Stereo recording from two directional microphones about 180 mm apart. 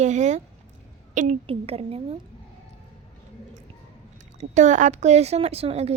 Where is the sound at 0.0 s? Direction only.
40° right (ahead or behind).